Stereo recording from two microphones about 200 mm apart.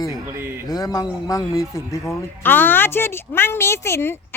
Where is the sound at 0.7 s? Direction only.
20° left (ahead or behind).